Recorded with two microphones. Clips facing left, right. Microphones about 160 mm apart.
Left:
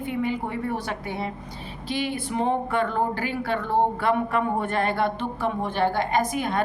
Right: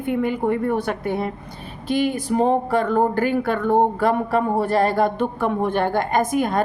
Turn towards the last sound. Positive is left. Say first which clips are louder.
# right 4 dB
turn(degrees=-45)  # may be behind; listen again after turning